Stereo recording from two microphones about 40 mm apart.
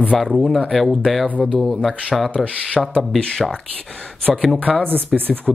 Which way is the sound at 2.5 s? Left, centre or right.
Left.